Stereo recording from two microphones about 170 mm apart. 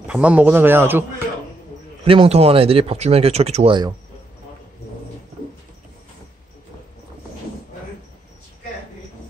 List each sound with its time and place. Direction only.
0.0 s a man's voice: 5° right (ahead or behind)
2.0 s speech: 35° right (ahead or behind)